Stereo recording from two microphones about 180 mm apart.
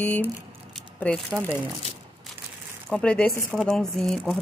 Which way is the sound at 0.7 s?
5° left (ahead or behind).